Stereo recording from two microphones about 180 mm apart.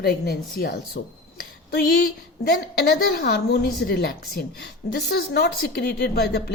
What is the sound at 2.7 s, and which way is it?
A woman's voice, 60° left (ahead or behind).